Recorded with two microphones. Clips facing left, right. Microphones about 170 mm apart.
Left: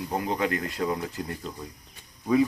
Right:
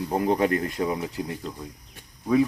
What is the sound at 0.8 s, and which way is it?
Speech, 10° right (ahead or behind).